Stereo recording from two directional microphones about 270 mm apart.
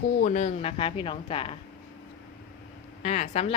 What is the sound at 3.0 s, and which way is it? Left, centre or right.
Speech, left.